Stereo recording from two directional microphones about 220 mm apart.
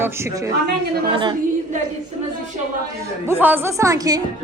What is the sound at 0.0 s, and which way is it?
A woman's voice, 10° right (ahead or behind).